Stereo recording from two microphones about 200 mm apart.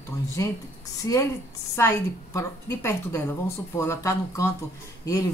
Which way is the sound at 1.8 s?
15° left (ahead or behind).